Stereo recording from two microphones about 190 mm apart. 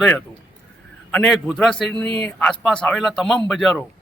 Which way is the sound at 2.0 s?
30° right (ahead or behind).